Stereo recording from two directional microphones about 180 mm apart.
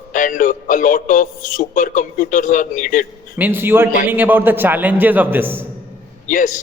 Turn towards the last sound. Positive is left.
turn(degrees=45)  # may be behind; listen again after turning